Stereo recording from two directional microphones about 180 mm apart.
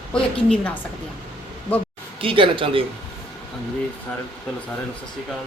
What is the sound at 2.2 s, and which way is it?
Speech, 30° right (ahead or behind).